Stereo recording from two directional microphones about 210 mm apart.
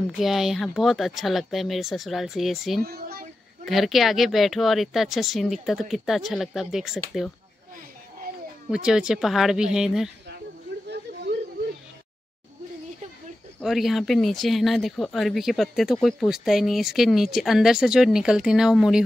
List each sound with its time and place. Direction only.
0.2 s speech: centre (ahead or behind)
2.9 s speech: 45° right (ahead or behind)
3.6 s speech: centre (ahead or behind)
8.6 s speech: 5° right (ahead or behind)
13.6 s speech: centre (ahead or behind)